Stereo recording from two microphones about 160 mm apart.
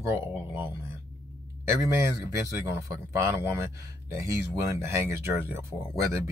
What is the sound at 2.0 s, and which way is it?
Speech, 15° right (ahead or behind).